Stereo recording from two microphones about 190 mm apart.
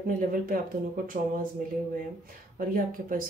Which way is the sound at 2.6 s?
45° right (ahead or behind).